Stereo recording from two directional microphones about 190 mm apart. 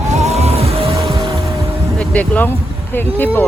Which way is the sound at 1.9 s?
5° left (ahead or behind).